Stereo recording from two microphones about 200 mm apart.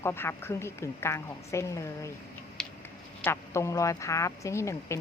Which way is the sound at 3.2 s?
10° left (ahead or behind).